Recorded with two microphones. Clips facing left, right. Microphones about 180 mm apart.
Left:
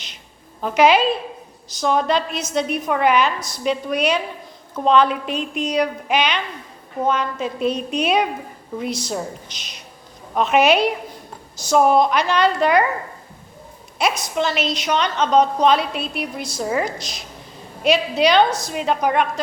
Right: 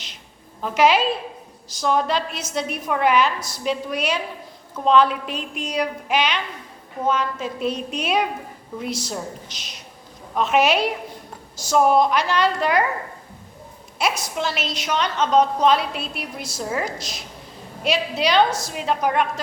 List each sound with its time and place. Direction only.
0.6 s a woman's voice: centre (ahead or behind)
14.0 s a woman's voice: 5° right (ahead or behind)